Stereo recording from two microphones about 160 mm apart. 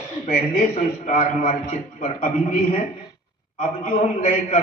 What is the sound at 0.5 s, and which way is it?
A man's voice, 50° left (ahead or behind).